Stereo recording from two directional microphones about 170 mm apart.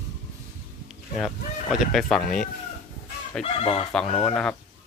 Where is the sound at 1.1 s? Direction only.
Centre (ahead or behind).